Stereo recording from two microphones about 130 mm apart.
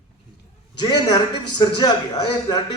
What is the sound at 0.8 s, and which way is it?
A man's voice, 35° left (ahead or behind).